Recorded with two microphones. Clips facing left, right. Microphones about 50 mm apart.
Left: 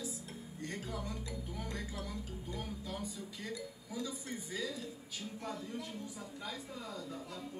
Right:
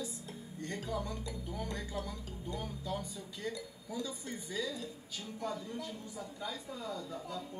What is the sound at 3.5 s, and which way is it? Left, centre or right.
Speech, left.